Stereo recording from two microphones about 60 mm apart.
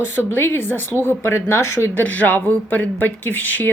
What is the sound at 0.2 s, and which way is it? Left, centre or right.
A woman's voice, left.